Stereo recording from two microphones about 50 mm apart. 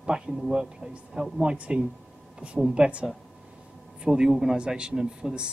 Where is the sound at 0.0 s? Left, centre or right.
Centre.